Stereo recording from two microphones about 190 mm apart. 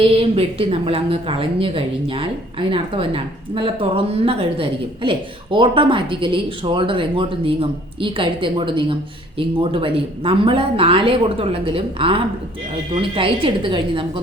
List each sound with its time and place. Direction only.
0.0 s a woman's voice: 30° right (ahead or behind)